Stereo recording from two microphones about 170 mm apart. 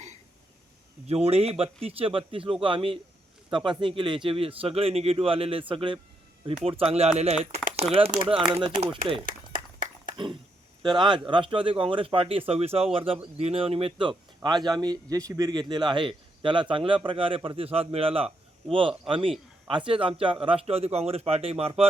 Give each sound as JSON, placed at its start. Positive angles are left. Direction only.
{"t": 1.0, "sound": "speech", "side_deg": -35}
{"t": 9.2, "sound": "a sound", "side_deg": -55}
{"t": 10.8, "sound": "speech", "side_deg": -25}